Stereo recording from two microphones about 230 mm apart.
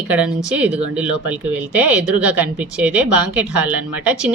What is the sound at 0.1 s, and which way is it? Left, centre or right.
Speech, centre.